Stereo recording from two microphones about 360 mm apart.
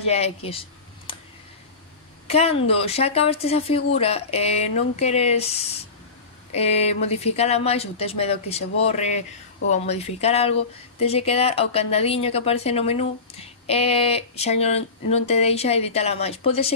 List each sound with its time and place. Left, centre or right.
0.0 s speech: centre
2.2 s speech: centre